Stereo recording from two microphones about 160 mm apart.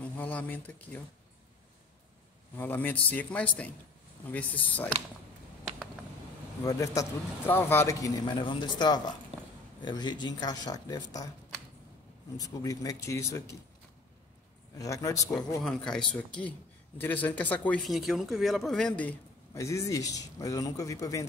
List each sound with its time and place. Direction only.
0.0 s a man's voice: 10° left (ahead or behind)
2.5 s a man's voice: 10° left (ahead or behind)
6.6 s a man's voice: 20° left (ahead or behind)
12.4 s a man's voice: 20° left (ahead or behind)
14.8 s a man's voice: 20° left (ahead or behind)
15.6 s speech: 5° left (ahead or behind)
19.5 s a man's voice: 20° left (ahead or behind)